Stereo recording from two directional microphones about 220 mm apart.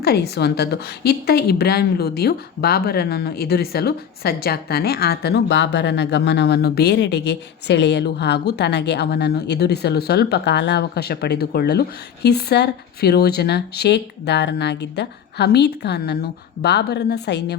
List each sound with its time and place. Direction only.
0.0 s a woman's voice: 45° left (ahead or behind)